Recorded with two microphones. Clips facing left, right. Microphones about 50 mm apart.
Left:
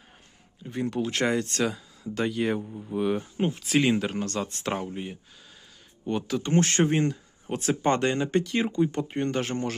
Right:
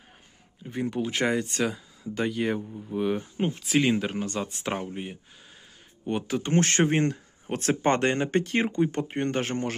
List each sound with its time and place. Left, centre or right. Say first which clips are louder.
0.6 s speech: even; centre
6.1 s speech: even; right